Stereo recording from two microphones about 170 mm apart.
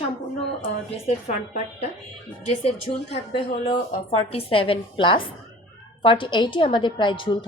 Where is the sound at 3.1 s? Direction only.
35° left (ahead or behind).